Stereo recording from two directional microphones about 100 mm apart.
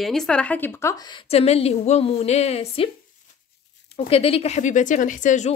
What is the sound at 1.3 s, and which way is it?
A woman's voice, 90° left.